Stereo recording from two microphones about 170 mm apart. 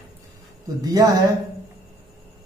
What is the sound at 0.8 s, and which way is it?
Speech, 20° right (ahead or behind).